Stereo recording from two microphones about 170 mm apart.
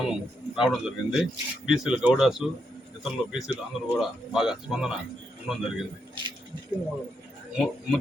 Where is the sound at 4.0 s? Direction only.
5° right (ahead or behind).